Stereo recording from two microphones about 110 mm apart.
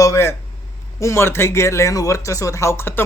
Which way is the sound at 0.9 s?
25° left (ahead or behind).